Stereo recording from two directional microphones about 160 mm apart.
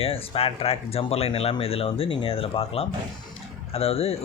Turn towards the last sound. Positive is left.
turn(degrees=40)  # may be behind; listen again after turning